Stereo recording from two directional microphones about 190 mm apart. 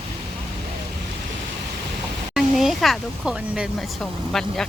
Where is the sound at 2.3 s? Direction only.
Centre (ahead or behind).